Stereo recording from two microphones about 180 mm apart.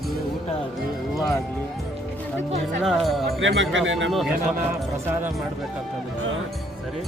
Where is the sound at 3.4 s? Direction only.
90° right.